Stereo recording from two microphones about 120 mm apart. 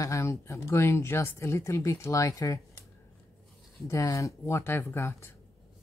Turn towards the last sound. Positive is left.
turn(degrees=20)  # may be behind; listen again after turning